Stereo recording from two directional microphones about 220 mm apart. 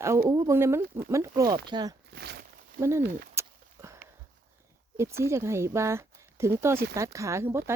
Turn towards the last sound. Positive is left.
turn(degrees=-10)  # may be behind; listen again after turning